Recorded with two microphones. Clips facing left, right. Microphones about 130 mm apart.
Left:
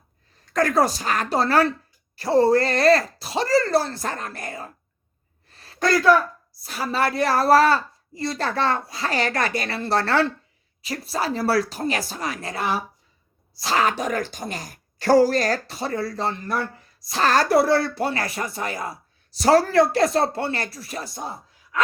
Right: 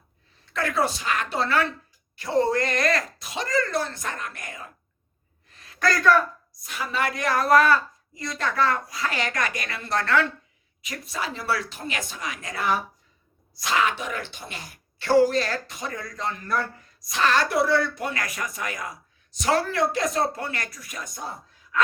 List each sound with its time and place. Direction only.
0.4 s speech: 40° left (ahead or behind)
5.5 s a sound: 35° left (ahead or behind)
6.6 s speech: 35° left (ahead or behind)
17.1 s speech: 40° left (ahead or behind)